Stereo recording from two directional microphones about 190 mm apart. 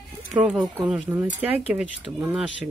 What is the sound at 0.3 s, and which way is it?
Speech, 5° right (ahead or behind).